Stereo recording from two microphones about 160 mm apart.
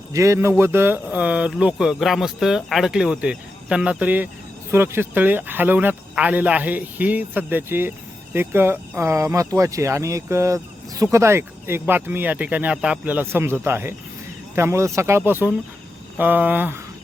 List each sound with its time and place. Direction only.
0.1 s speech: 20° right (ahead or behind)